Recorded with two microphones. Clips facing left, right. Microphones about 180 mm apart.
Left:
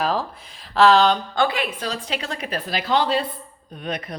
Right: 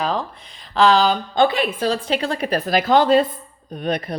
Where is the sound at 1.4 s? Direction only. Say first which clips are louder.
Right 5 dB; 25° right (ahead or behind); by 3.2 s 50° right (ahead or behind).